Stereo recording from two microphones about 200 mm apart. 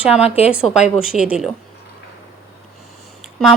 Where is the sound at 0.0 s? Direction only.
5° right (ahead or behind).